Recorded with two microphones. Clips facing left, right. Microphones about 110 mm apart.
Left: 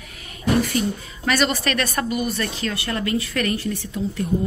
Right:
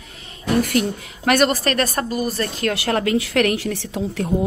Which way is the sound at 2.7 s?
90° right.